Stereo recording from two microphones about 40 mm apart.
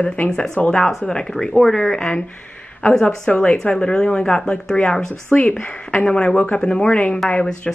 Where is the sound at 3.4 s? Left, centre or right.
Left.